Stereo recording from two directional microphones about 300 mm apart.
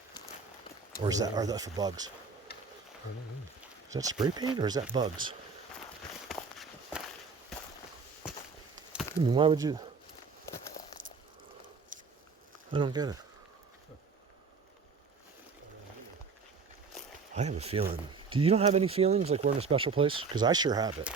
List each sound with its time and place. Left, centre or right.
1.0 s speech: centre
2.5 s a sound: left
3.6 s speech: centre
6.2 s walk: centre
8.7 s a sound: centre
9.2 s speech: centre
12.7 s speech: centre
17.3 s speech: right